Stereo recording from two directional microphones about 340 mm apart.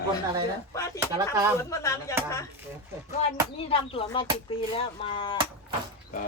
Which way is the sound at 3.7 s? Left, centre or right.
Centre.